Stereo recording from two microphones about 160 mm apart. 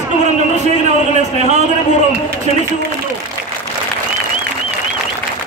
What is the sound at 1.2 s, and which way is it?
Speech, 45° right (ahead or behind).